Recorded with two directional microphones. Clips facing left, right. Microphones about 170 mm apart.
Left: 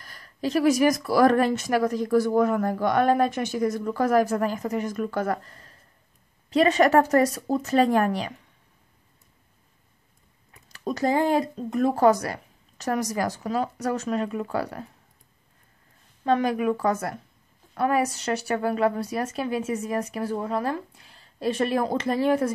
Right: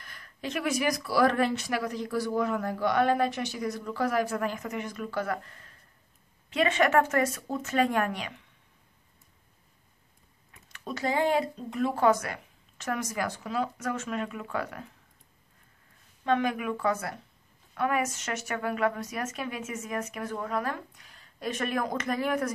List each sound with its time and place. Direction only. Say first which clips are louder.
0.0 s a woman's voice: left 8 dB; 35° left (ahead or behind)
10.7 s a woman's voice: left 6 dB; 40° left (ahead or behind)
16.3 s a woman's voice: left 5 dB; 35° left (ahead or behind)